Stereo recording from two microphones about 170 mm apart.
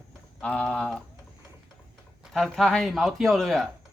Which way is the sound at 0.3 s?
5° left (ahead or behind).